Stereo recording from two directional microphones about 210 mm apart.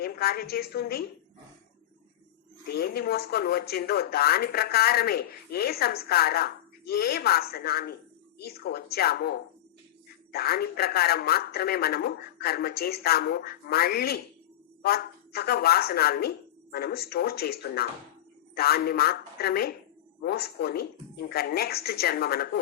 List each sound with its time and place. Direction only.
0.0 s a woman's voice: 45° left (ahead or behind)
2.7 s speech: 50° left (ahead or behind)